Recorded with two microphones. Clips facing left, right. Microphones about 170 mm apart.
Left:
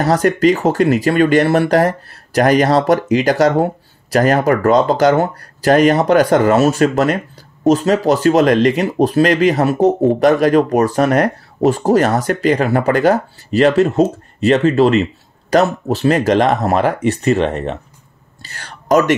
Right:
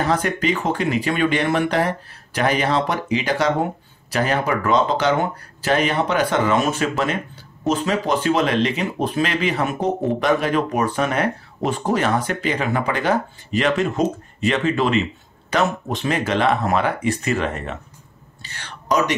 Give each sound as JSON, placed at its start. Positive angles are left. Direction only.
{"t": 0.0, "sound": "speech", "side_deg": 40}
{"t": 18.4, "sound": "whispering", "side_deg": 40}